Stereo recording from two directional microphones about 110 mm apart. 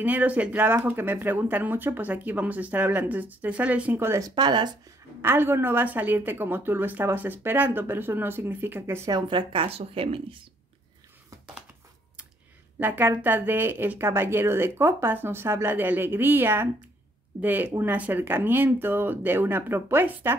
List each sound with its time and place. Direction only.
0.0 s speech: 15° right (ahead or behind)
4.4 s speech: 40° right (ahead or behind)
5.2 s a woman's voice: 20° right (ahead or behind)
9.1 s a woman's voice: 50° right (ahead or behind)
12.7 s a woman's voice: 20° right (ahead or behind)